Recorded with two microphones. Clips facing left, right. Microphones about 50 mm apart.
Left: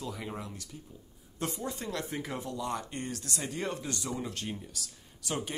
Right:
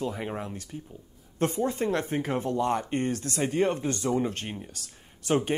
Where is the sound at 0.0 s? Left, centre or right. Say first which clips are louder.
Right 7 dB; right.